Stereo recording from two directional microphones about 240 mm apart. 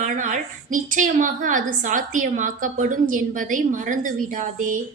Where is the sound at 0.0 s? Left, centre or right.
Right.